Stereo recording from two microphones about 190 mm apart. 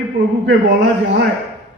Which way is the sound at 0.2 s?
65° right (ahead or behind).